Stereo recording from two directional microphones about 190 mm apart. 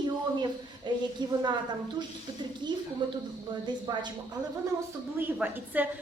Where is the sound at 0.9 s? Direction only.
25° right (ahead or behind).